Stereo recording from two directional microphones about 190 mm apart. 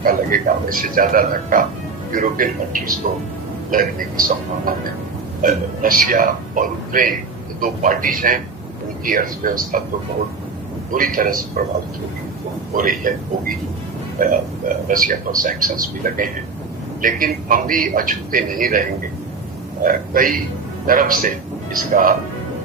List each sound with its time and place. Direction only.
0.0 s a man's voice: 45° right (ahead or behind)
10.9 s a man's voice: 45° right (ahead or behind)
12.7 s a man's voice: 45° right (ahead or behind)
14.8 s a man's voice: 45° right (ahead or behind)
19.8 s a man's voice: 45° right (ahead or behind)